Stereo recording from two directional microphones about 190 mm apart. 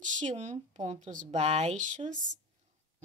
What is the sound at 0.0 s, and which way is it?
Speech, 40° right (ahead or behind).